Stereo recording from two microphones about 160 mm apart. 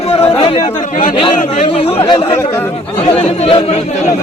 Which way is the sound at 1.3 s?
50° left (ahead or behind).